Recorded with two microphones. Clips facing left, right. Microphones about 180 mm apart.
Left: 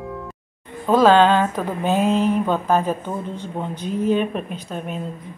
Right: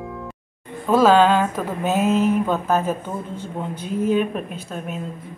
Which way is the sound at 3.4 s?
10° right (ahead or behind).